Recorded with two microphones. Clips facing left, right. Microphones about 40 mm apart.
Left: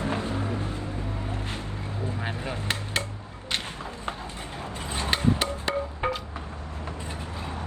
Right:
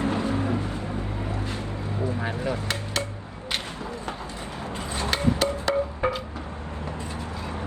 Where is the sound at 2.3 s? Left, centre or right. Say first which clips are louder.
Right 3 dB; left.